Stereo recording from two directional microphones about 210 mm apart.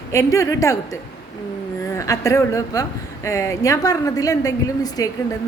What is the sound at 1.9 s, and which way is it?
A woman's voice, 15° left (ahead or behind).